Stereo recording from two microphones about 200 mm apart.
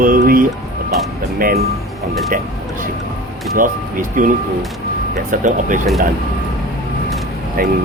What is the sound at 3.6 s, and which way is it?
Speech, 40° right (ahead or behind).